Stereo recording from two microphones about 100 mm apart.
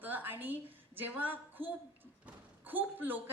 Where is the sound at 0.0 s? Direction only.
20° right (ahead or behind).